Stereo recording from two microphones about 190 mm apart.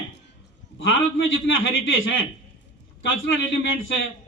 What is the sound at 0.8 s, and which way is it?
A man's voice, 85° left.